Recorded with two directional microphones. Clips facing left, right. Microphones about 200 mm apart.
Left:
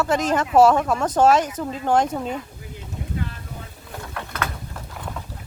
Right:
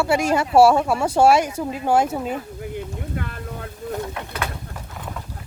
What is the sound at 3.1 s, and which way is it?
Boat, 60° right (ahead or behind).